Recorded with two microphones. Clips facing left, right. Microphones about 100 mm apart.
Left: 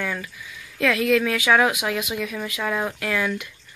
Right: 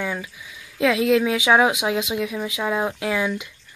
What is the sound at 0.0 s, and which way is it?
Speech, 15° right (ahead or behind).